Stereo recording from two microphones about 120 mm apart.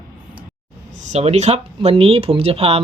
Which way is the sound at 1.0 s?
70° right (ahead or behind).